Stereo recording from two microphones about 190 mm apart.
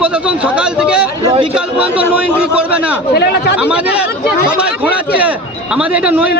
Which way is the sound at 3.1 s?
60° left (ahead or behind).